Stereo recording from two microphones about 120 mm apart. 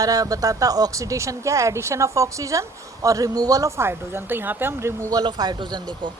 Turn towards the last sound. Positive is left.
turn(degrees=-40)  # may be behind; listen again after turning